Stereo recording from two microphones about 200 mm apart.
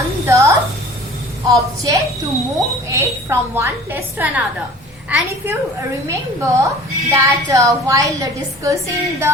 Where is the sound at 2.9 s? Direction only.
15° right (ahead or behind).